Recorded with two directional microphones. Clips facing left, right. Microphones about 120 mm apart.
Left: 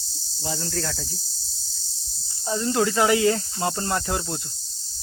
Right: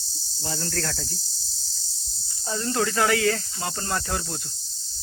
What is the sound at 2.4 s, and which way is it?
Speech, 15° left (ahead or behind).